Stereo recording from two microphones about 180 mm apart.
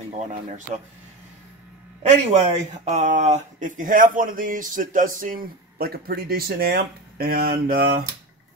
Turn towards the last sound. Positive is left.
turn(degrees=-60)  # may be behind; listen again after turning